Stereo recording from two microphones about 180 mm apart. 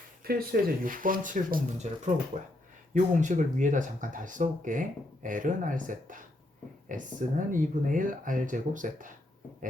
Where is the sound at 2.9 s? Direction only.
45° right (ahead or behind).